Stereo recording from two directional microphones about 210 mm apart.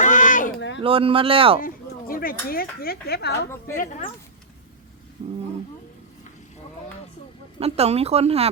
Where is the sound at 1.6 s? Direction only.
45° left (ahead or behind).